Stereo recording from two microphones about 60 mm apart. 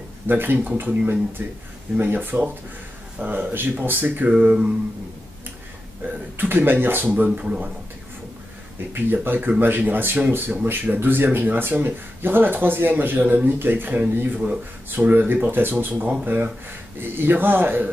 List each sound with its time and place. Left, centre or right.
0.3 s speech: right
4.3 s speech: centre
6.3 s speech: right
7.3 s speech: centre
8.9 s speech: right